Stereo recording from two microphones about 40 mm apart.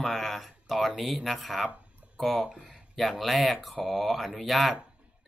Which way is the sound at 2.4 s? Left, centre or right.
Centre.